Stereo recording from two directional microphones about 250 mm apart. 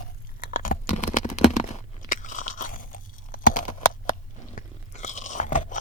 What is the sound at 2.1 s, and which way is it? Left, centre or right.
Crunch, left.